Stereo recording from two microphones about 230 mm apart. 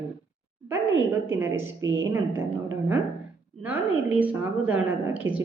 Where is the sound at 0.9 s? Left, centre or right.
Right.